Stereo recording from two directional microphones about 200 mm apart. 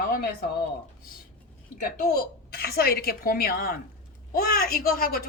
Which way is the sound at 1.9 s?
45° left (ahead or behind).